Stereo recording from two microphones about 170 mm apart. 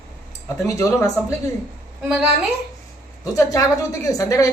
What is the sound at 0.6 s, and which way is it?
Speech, 20° left (ahead or behind).